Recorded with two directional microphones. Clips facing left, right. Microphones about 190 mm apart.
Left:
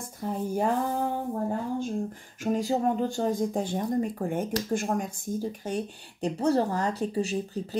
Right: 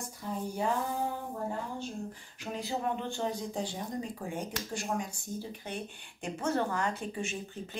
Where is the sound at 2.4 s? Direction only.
45° left (ahead or behind).